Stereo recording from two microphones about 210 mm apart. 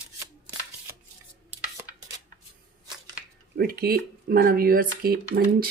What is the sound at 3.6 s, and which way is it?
Speech, 45° right (ahead or behind).